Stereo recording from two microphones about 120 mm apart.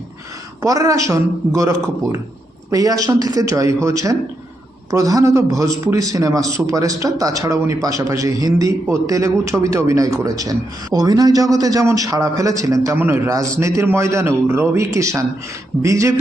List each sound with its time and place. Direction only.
0.6 s a man's voice: 30° right (ahead or behind)